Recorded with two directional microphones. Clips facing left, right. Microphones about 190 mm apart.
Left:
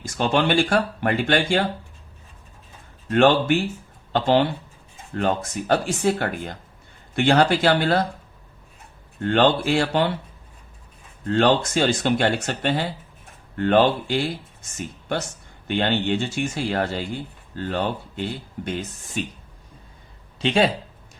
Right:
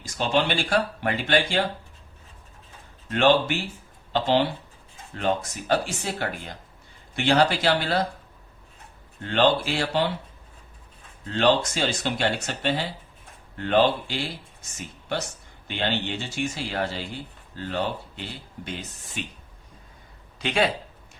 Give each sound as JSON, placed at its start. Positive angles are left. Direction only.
{"t": 0.2, "sound": "speech", "side_deg": 50}
{"t": 3.1, "sound": "speech", "side_deg": 50}
{"t": 9.2, "sound": "speech", "side_deg": 55}
{"t": 11.3, "sound": "speech", "side_deg": 50}
{"t": 15.6, "sound": "speech", "side_deg": 55}
{"t": 20.4, "sound": "speech", "side_deg": 30}